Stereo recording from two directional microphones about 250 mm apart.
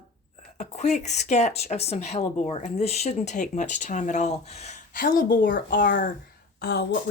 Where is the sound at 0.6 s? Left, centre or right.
Left.